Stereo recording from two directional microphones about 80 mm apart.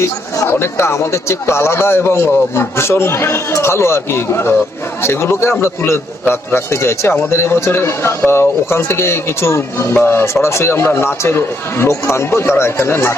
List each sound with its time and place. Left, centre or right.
0.4 s a man's voice: left